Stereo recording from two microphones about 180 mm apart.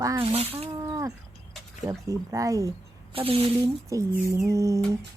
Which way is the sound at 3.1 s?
30° right (ahead or behind).